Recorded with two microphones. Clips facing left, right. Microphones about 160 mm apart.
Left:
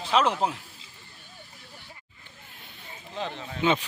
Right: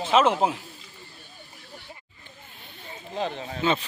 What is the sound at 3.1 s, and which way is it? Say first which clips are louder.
Speech: right 4 dB; 45° right (ahead or behind).